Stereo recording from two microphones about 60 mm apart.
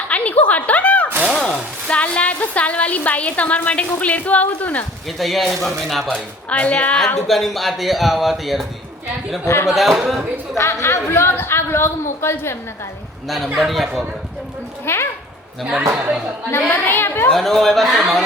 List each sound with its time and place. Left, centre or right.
0.1 s a sound: left
1.4 s a woman's voice: centre
5.0 s speech: centre
6.1 s a woman's voice: left
7.3 s speech: centre
9.4 s a woman's voice: left
9.6 s speech: centre
10.6 s a woman's voice: left
13.2 s speech: centre
14.9 s a woman's voice: left
15.9 s speech: right
16.6 s a woman's voice: left
17.3 s speech: centre